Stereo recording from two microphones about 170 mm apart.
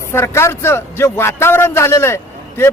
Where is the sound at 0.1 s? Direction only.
15° left (ahead or behind).